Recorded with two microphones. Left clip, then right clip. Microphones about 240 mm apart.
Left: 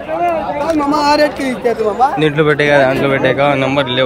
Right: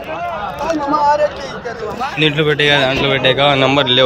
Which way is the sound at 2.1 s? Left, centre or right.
Centre.